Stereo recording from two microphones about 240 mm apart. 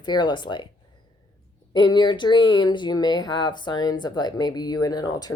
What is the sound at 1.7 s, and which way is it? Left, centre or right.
Speech, centre.